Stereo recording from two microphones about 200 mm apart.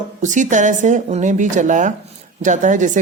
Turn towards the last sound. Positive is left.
turn(degrees=-40)  # may be behind; listen again after turning